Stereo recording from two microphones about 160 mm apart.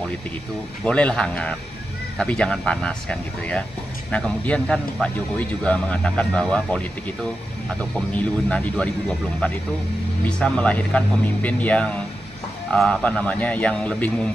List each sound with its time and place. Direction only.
0.8 s speech: 5° left (ahead or behind)
7.9 s speech: 10° left (ahead or behind)
10.2 s speech: 5° left (ahead or behind)